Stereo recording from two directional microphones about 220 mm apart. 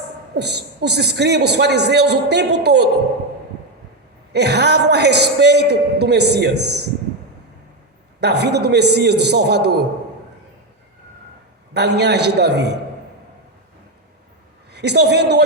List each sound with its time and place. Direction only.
0.3 s a man's voice: 50° right (ahead or behind)
4.3 s a man's voice: 50° right (ahead or behind)
8.2 s a man's voice: 50° right (ahead or behind)
11.7 s a man's voice: 50° right (ahead or behind)
14.7 s a man's voice: 50° right (ahead or behind)